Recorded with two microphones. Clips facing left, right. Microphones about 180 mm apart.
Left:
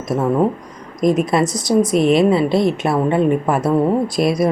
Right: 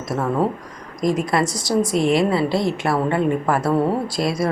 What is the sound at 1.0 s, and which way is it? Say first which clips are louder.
A woman's voice: left 4 dB; 20° left (ahead or behind).